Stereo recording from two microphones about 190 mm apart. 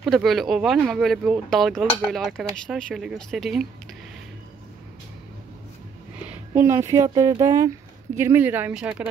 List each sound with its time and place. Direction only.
0.0 s speech: centre (ahead or behind)
6.2 s speech: 10° right (ahead or behind)